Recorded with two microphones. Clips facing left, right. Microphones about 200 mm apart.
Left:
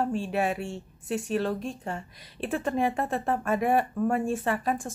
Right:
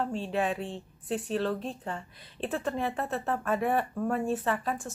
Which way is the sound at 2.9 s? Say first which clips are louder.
Left 3 dB; 50° left (ahead or behind).